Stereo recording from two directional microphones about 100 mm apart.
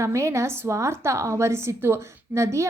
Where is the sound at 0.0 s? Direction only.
30° right (ahead or behind).